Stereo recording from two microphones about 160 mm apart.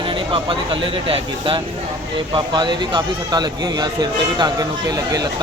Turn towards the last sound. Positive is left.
turn(degrees=-25)  # may be behind; listen again after turning